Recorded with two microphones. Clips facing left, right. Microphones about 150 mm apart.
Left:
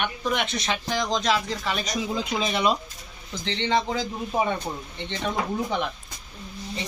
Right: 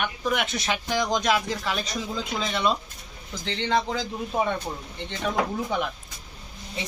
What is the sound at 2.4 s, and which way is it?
Speech, 15° left (ahead or behind).